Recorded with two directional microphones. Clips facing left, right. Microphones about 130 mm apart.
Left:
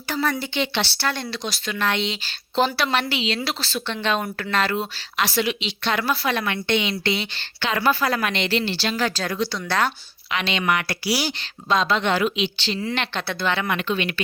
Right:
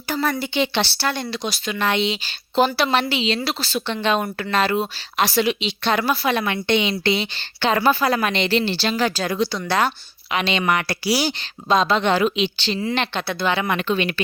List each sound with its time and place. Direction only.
0.1 s a woman's voice: centre (ahead or behind)
2.7 s a woman's voice: 25° right (ahead or behind)
3.4 s a woman's voice: 5° right (ahead or behind); by 5.3 s 20° right (ahead or behind)
5.8 s speech: 35° right (ahead or behind)
6.1 s a woman's voice: 20° right (ahead or behind)
9.1 s speech: 15° right (ahead or behind)
10.3 s a woman's voice: 25° right (ahead or behind)
12.8 s a woman's voice: 20° right (ahead or behind)
13.1 s speech: 10° right (ahead or behind)
13.7 s speech: 35° right (ahead or behind)